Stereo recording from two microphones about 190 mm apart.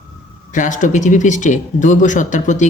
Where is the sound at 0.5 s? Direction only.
40° left (ahead or behind).